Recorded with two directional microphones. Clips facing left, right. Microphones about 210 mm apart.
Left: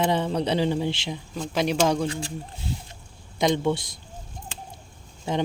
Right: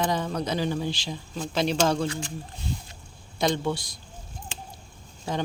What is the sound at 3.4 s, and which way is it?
Speech, 20° left (ahead or behind).